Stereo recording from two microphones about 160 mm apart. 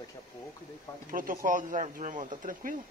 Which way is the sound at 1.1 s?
60° right (ahead or behind).